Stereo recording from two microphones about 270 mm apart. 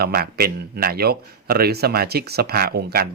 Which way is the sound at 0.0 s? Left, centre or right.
Right.